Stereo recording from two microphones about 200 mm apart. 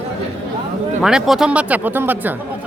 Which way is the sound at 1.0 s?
Centre (ahead or behind).